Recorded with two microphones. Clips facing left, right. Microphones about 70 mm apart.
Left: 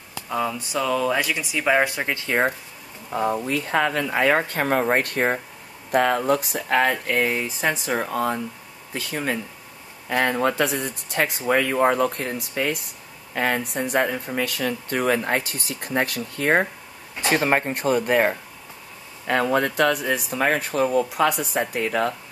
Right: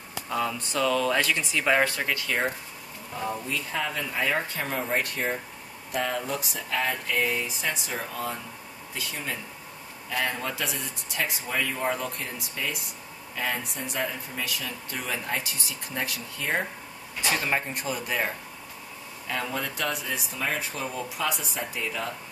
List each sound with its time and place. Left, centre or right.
0.3 s speech: centre; by 2.5 s left
3.1 s speech: left
3.4 s speech: left
7.2 s speech: left